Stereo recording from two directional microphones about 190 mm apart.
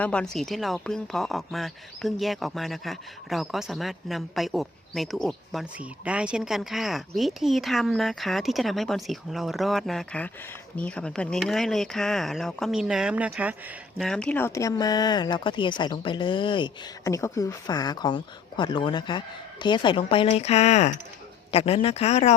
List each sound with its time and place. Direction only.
0.0 s speech: 5° left (ahead or behind)
14.0 s speech: 5° left (ahead or behind); by 22.4 s 35° left (ahead or behind)